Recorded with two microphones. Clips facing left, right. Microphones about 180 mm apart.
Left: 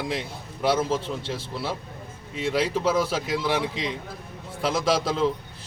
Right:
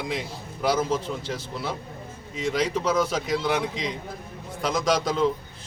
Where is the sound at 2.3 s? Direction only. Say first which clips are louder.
Left 1 dB; 5° left (ahead or behind).